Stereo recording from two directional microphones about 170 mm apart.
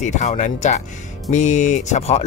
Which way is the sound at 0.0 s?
45° left (ahead or behind).